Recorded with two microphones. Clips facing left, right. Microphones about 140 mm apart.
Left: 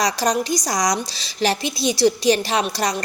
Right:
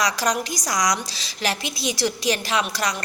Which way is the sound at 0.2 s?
25° left (ahead or behind).